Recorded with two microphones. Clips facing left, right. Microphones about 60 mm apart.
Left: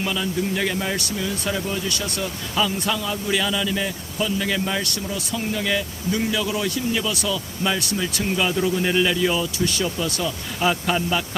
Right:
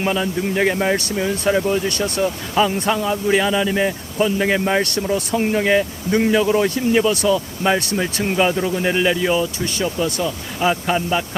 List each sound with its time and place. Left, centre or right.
0.0 s speech: right
10.2 s speech: centre